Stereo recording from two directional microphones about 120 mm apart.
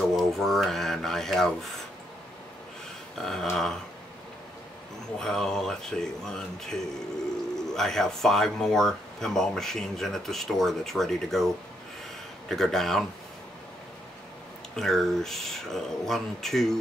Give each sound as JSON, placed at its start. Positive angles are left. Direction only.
{"t": 0.0, "sound": "speech", "side_deg": 0}
{"t": 3.2, "sound": "speech", "side_deg": 5}
{"t": 5.2, "sound": "speech", "side_deg": 5}
{"t": 14.8, "sound": "speech", "side_deg": 0}